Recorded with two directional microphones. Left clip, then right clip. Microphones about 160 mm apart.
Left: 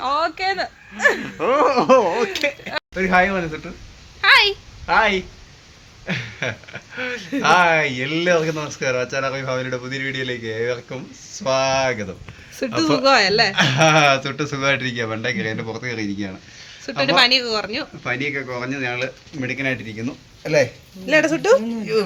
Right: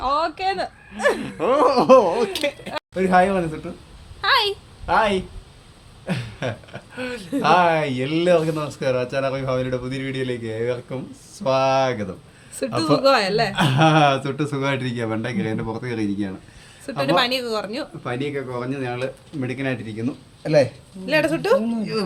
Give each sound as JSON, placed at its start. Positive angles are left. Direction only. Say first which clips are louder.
{"t": 0.0, "sound": "speech", "louder": "left 1 dB", "side_deg": 5}
{"t": 2.0, "sound": "speech", "louder": "left 1 dB", "side_deg": 15}
{"t": 2.3, "sound": "a man's voice", "louder": "left 2 dB", "side_deg": 0}
{"t": 4.2, "sound": "a sound", "louder": "left 5 dB", "side_deg": 5}
{"t": 6.1, "sound": "a man's voice", "louder": "left 3 dB", "side_deg": -5}
{"t": 12.8, "sound": "speech", "louder": "left 2 dB", "side_deg": 35}
{"t": 13.5, "sound": "a man's voice", "louder": "left 3 dB", "side_deg": 0}
{"t": 17.0, "sound": "a man's voice", "louder": "left 4 dB", "side_deg": 25}
{"t": 18.0, "sound": "a man's voice", "louder": "left 3 dB", "side_deg": -5}
{"t": 21.1, "sound": "speech", "louder": "left 3 dB", "side_deg": 40}